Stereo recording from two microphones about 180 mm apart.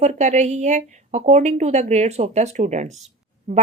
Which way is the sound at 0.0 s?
40° right (ahead or behind).